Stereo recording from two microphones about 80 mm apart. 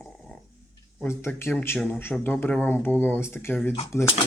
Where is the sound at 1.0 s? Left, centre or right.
Left.